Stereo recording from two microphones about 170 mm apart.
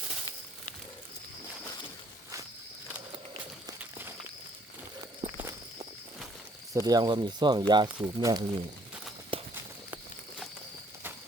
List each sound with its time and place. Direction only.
5.2 s walk: 15° right (ahead or behind)
6.7 s speech: 20° right (ahead or behind)
9.3 s walk: 35° right (ahead or behind)